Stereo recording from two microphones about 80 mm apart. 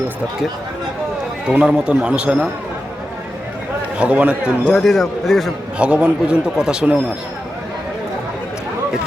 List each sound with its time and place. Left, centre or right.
1.5 s a man's voice: centre
3.9 s a man's voice: centre
4.6 s a man's voice: centre
5.8 s a man's voice: centre